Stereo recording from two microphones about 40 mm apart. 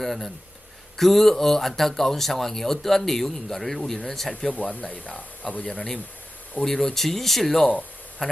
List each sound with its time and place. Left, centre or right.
0.0 s a sound: centre
0.9 s speech: centre
4.5 s speech: left
5.6 s speech: centre
8.2 s speech: centre